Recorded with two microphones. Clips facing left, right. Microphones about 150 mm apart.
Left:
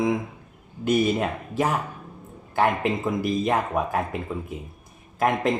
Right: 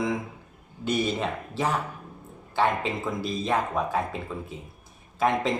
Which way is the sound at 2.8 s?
15° left (ahead or behind).